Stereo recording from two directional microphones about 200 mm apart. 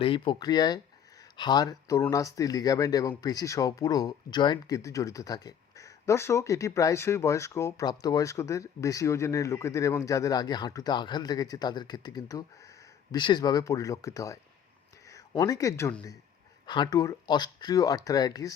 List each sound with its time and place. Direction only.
0.0 s speech: 25° left (ahead or behind)
16.6 s speech: 20° left (ahead or behind)